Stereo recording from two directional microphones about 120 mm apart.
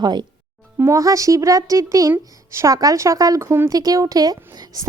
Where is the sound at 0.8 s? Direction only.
25° right (ahead or behind).